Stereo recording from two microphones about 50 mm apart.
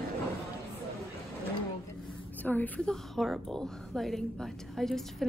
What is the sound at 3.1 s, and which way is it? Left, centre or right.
A woman's voice, centre.